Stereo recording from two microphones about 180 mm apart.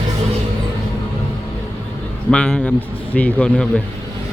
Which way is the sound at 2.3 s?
5° left (ahead or behind).